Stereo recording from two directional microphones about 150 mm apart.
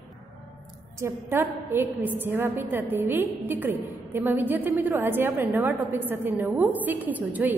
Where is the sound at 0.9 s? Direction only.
15° right (ahead or behind).